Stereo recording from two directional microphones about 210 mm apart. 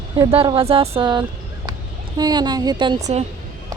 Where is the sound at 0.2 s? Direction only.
25° right (ahead or behind).